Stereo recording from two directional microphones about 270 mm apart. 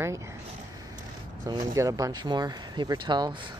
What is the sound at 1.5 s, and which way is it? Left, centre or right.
Speech, centre.